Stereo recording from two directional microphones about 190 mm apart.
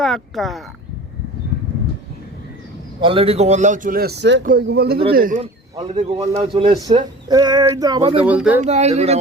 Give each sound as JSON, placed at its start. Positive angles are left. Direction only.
{"t": 0.0, "sound": "speech", "side_deg": 0}
{"t": 3.0, "sound": "a man's voice", "side_deg": -30}
{"t": 4.4, "sound": "speech", "side_deg": -55}
{"t": 5.4, "sound": "a man's voice", "side_deg": -35}
{"t": 8.1, "sound": "speech", "side_deg": -5}
{"t": 8.6, "sound": "a man's voice", "side_deg": -35}